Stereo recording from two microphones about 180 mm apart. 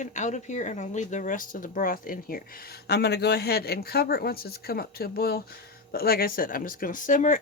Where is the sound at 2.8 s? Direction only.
65° left (ahead or behind).